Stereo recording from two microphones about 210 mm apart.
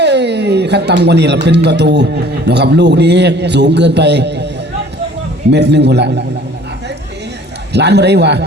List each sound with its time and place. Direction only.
0.0 s a man's voice: 55° right (ahead or behind)
5.5 s a man's voice: 55° right (ahead or behind)
7.7 s a man's voice: 55° right (ahead or behind)